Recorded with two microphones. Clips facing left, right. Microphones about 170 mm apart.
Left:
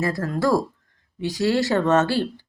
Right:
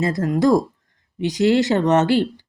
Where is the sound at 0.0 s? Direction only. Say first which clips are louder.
Right 5 dB; 20° right (ahead or behind).